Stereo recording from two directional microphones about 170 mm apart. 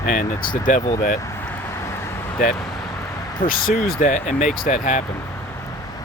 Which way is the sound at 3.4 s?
55° left (ahead or behind).